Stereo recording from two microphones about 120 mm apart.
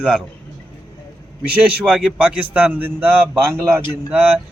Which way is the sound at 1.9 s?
10° right (ahead or behind).